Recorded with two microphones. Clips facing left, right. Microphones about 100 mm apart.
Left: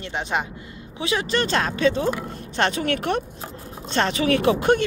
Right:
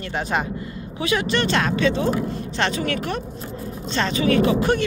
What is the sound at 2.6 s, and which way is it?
Speech, 55° left (ahead or behind).